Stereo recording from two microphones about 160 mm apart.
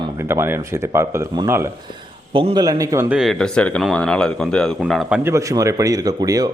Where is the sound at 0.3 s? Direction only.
15° right (ahead or behind).